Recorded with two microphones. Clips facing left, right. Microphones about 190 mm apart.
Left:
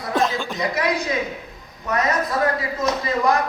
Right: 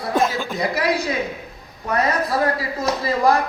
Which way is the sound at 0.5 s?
30° right (ahead or behind).